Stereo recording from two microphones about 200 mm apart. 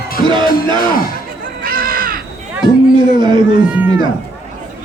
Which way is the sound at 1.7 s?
45° right (ahead or behind).